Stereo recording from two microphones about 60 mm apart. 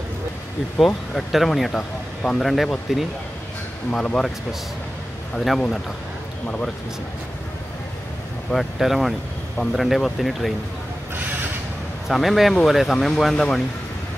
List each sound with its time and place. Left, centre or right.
1.1 s speech: centre
3.9 s speech: centre
5.3 s speech: centre
6.4 s speech: centre
8.5 s speech: centre
12.1 s speech: centre